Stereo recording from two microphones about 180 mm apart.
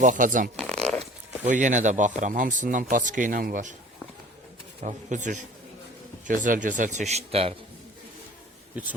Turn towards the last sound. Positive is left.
turn(degrees=-35)  # may be behind; listen again after turning